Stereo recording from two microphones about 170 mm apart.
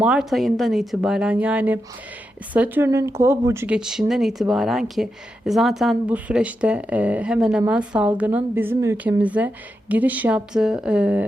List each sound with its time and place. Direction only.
0.0 s a woman's voice: 5° right (ahead or behind)
3.8 s a woman's voice: 5° right (ahead or behind)